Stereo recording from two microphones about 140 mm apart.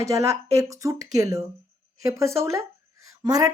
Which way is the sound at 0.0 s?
20° right (ahead or behind).